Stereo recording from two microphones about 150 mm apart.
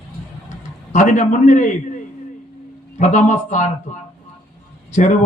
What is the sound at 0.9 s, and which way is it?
Speech, 55° left (ahead or behind).